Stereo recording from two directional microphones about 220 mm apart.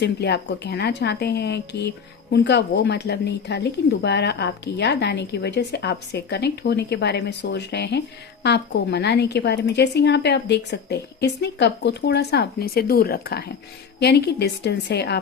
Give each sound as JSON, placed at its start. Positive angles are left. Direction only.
{"t": 0.0, "sound": "speech", "side_deg": 50}